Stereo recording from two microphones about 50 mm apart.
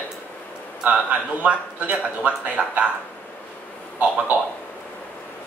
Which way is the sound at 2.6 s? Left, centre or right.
Centre.